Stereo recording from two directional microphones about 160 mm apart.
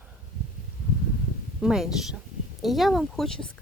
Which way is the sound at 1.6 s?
5° right (ahead or behind).